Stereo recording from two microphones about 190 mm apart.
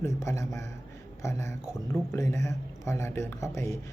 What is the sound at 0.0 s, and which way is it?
A man's voice, 15° left (ahead or behind).